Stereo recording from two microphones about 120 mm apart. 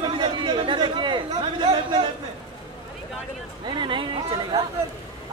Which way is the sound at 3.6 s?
40° right (ahead or behind).